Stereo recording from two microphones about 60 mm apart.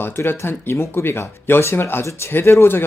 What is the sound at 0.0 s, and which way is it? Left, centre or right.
Speech, left.